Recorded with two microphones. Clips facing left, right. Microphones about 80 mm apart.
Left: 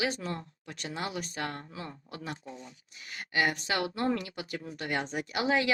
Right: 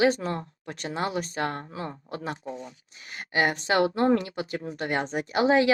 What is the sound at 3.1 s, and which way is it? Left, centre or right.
A woman's voice, right.